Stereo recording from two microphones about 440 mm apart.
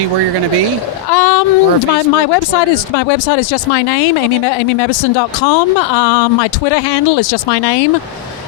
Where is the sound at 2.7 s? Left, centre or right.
Left.